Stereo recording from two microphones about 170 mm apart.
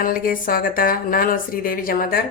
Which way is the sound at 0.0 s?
55° left (ahead or behind).